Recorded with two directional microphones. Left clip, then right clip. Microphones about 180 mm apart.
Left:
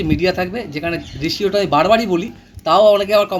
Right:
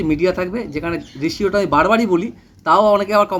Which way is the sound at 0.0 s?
20° right (ahead or behind).